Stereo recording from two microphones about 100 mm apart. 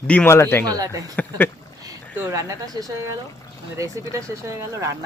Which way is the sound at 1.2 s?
20° left (ahead or behind).